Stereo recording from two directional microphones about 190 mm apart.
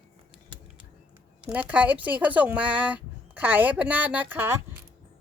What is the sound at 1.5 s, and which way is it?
A woman's voice, 10° right (ahead or behind).